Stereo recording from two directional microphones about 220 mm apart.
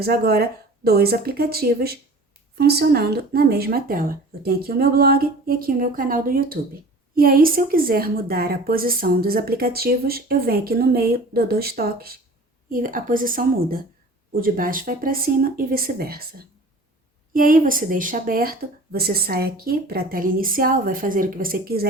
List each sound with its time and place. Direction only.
0.0 s a woman's voice: 45° right (ahead or behind)